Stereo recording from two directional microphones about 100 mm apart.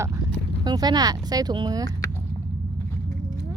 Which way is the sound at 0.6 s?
45° right (ahead or behind).